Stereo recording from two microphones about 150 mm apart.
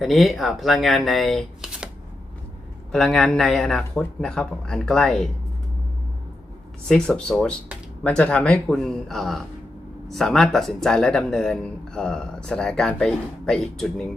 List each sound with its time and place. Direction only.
0.0 s speech: centre (ahead or behind)
2.9 s speech: 5° left (ahead or behind)
6.8 s speech: 5° left (ahead or behind)